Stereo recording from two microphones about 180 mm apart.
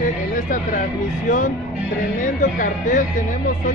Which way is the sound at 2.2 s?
45° left (ahead or behind).